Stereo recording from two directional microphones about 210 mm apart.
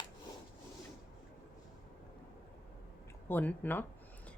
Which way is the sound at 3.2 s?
10° left (ahead or behind).